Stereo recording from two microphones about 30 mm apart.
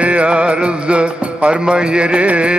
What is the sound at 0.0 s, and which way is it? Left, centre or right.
Music, right.